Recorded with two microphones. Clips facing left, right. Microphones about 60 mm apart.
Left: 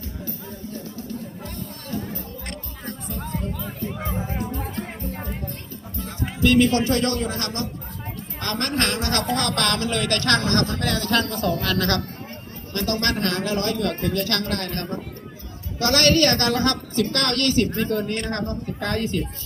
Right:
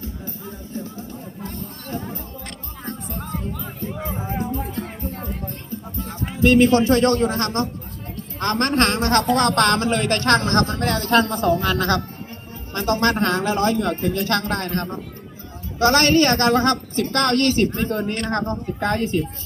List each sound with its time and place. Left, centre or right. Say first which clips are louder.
0.0 s music: right 1 dB; right
6.0 s a woman's voice: right 2 dB; right